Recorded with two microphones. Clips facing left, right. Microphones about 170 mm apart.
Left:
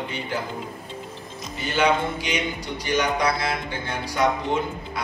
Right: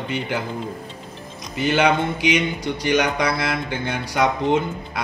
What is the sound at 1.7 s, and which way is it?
A man's voice, 70° right (ahead or behind).